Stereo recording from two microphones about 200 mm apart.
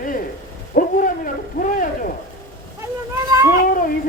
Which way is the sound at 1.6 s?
40° left (ahead or behind).